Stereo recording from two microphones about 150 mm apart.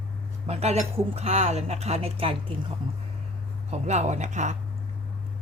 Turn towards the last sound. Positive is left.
turn(degrees=-50)  # may be behind; listen again after turning